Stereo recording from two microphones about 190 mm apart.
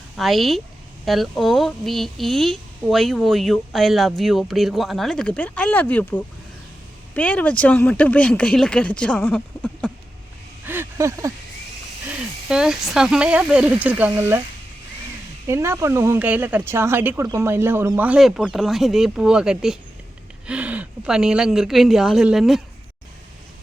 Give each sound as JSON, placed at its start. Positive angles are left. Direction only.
{"t": 0.2, "sound": "a woman's voice", "side_deg": 0}
{"t": 10.7, "sound": "a sound", "side_deg": -15}
{"t": 12.0, "sound": "a woman's voice", "side_deg": -5}
{"t": 15.4, "sound": "a woman's voice", "side_deg": -15}